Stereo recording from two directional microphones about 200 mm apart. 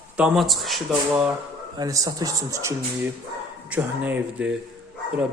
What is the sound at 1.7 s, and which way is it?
Speech, 15° right (ahead or behind).